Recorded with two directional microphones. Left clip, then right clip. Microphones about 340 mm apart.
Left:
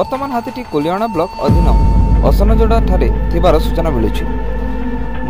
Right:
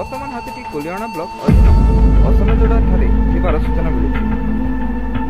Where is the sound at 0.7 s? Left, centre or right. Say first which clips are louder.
Left 9 dB; centre.